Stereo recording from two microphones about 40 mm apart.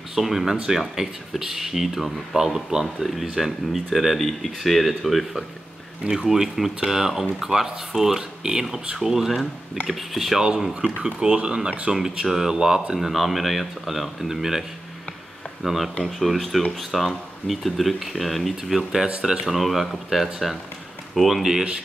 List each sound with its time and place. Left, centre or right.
0.1 s speech: centre
6.0 s speech: centre
10.4 s speech: centre
11.9 s speech: centre
12.9 s speech: centre
15.6 s speech: centre